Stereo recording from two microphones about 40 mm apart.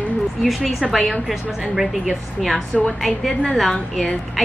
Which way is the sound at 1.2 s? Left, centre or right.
Centre.